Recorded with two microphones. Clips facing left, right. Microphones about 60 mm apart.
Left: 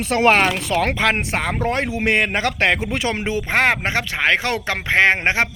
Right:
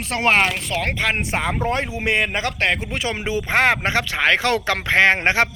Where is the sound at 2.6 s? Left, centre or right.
Left.